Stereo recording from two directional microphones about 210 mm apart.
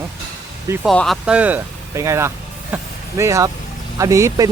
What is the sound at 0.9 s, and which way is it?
Speech, centre (ahead or behind).